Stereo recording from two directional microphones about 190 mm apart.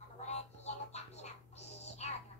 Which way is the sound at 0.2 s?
35° left (ahead or behind).